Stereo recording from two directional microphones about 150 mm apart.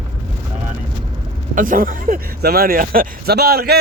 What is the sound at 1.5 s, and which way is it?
Speech, 65° right (ahead or behind).